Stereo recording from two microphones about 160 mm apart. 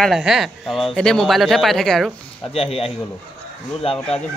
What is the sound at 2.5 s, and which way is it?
Speech, 40° left (ahead or behind).